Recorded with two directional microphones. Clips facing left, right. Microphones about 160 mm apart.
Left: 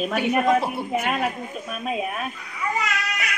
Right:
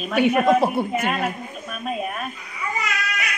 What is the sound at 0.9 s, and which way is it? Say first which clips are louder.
A woman's voice: even; centre (ahead or behind).